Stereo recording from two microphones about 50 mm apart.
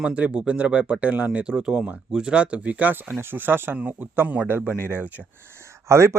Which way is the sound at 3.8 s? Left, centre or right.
Right.